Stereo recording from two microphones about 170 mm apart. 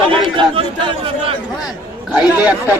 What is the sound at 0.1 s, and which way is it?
Chatter, 30° right (ahead or behind).